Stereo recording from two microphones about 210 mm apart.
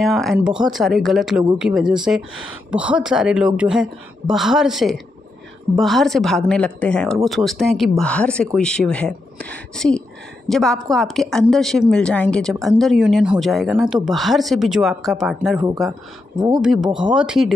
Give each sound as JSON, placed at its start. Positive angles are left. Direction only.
{"t": 0.0, "sound": "a woman's voice", "side_deg": 0}
{"t": 16.3, "sound": "speech", "side_deg": -20}
{"t": 16.6, "sound": "a woman's voice", "side_deg": -5}